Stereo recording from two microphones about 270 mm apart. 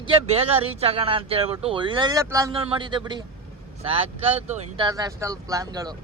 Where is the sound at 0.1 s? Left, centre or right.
Right.